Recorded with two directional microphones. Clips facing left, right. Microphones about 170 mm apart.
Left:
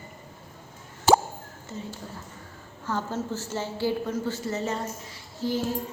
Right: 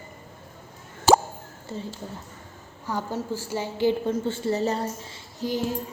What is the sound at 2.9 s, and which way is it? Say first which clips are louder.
A woman's voice: right 1 dB; 10° right (ahead or behind).